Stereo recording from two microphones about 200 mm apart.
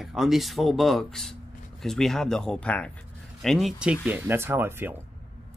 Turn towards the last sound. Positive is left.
turn(degrees=-10)  # may be behind; listen again after turning